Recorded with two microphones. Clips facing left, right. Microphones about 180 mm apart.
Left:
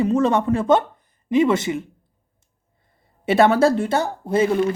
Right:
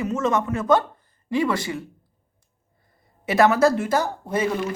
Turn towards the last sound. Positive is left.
turn(degrees=30)  # may be behind; listen again after turning